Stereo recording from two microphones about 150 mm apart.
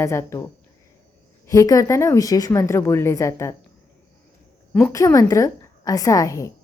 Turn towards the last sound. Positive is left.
turn(degrees=20)  # may be behind; listen again after turning